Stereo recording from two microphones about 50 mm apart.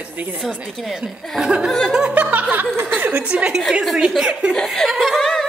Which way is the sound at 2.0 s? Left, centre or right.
Right.